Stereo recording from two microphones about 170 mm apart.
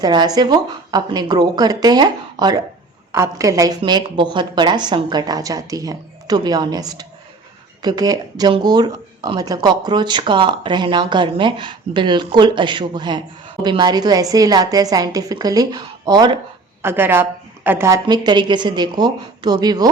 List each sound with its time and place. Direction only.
0.0 s speech: 25° right (ahead or behind)
16.8 s a woman's voice: 15° right (ahead or behind)